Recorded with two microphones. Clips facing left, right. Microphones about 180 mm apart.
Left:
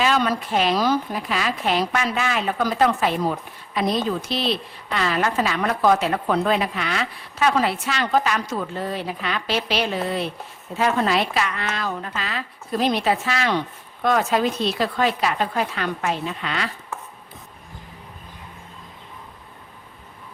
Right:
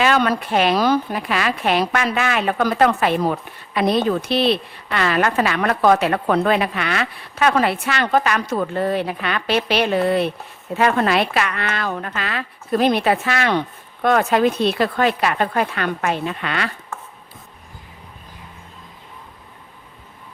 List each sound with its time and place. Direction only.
0.0 s a woman's voice: 60° right (ahead or behind)